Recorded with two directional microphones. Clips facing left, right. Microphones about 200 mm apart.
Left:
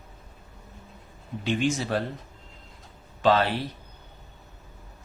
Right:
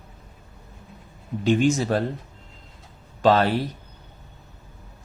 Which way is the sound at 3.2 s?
40° right (ahead or behind).